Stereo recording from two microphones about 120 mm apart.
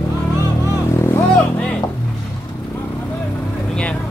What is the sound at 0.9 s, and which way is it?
Vehicle, 25° left (ahead or behind).